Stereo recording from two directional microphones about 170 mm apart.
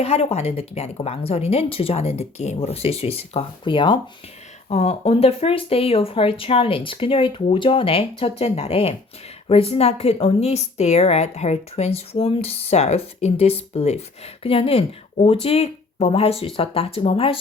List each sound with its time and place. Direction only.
0.0 s a woman's voice: 35° left (ahead or behind)